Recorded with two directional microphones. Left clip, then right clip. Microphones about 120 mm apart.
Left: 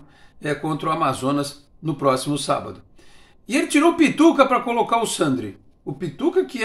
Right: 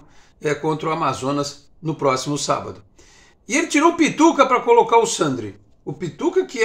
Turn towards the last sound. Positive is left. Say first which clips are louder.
# even
turn(degrees=15)  # may be behind; listen again after turning